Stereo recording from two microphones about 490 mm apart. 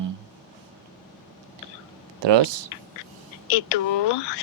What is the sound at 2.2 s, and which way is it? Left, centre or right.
Speech, right.